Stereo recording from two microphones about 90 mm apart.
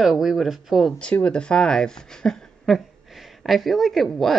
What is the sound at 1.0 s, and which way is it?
Speech, 15° left (ahead or behind).